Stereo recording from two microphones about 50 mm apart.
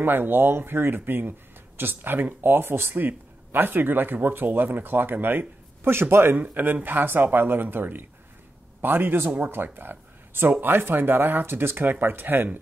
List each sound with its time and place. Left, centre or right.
0.0 s speech: right
6.3 s speech: right